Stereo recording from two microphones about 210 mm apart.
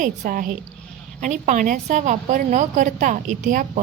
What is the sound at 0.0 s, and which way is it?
A woman's voice, 40° right (ahead or behind).